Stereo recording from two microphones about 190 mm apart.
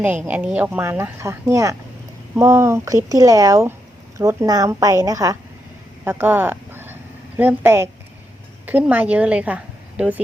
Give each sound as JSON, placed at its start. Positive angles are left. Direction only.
{"t": 0.0, "sound": "a woman's voice", "side_deg": -10}